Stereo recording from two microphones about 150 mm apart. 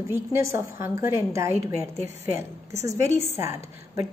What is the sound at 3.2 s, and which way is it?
Speech, 15° right (ahead or behind).